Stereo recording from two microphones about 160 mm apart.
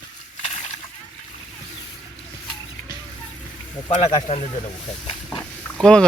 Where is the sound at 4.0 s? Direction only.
40° left (ahead or behind).